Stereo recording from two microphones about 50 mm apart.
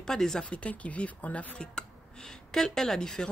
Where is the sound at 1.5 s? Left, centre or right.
Centre.